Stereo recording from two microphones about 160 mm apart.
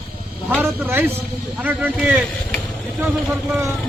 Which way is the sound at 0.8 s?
15° right (ahead or behind).